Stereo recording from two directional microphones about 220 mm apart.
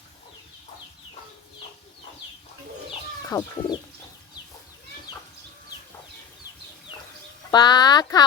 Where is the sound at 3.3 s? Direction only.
15° left (ahead or behind).